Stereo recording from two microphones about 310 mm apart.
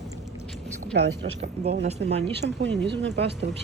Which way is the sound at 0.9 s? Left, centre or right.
Right.